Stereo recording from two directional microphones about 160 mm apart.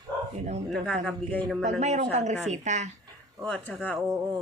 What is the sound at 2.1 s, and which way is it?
Speech, 45° right (ahead or behind).